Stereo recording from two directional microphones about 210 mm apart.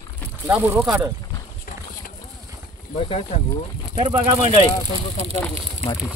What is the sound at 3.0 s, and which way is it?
Speech, 30° left (ahead or behind).